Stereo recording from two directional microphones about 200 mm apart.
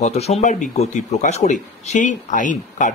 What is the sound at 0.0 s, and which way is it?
Speech, 35° left (ahead or behind).